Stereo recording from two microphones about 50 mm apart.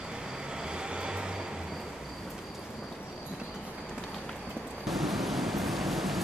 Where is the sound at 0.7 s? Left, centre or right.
Centre.